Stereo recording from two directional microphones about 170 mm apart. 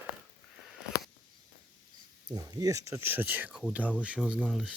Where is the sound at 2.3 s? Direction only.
20° right (ahead or behind).